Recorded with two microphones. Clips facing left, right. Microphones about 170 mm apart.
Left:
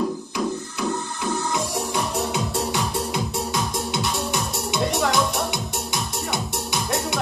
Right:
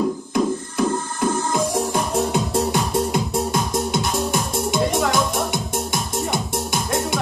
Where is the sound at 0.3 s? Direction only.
45° right (ahead or behind).